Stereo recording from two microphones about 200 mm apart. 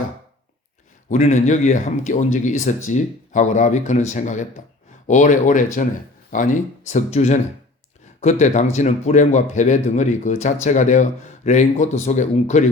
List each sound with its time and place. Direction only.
1.1 s speech: 35° left (ahead or behind)